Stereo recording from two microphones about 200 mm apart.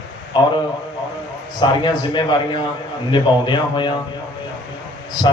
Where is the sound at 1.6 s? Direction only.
25° left (ahead or behind).